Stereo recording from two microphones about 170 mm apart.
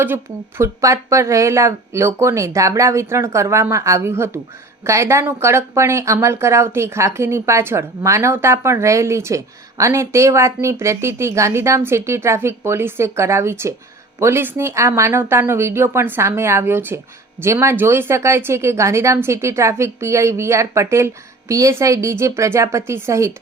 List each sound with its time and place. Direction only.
0.0 s speech: 15° right (ahead or behind)